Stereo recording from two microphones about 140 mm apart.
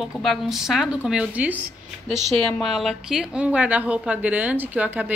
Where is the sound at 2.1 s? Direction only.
Centre (ahead or behind).